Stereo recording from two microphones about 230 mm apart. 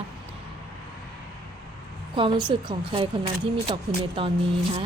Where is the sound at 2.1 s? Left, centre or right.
Right.